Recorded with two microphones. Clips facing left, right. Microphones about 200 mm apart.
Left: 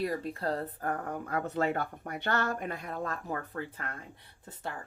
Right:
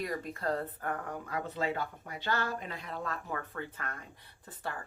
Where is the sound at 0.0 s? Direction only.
30° left (ahead or behind).